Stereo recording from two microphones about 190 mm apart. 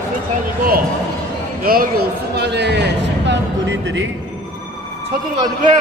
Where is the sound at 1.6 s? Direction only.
50° right (ahead or behind); by 4.0 s 70° right (ahead or behind).